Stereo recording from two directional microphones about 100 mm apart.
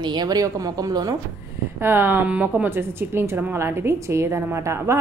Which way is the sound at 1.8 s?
20° right (ahead or behind).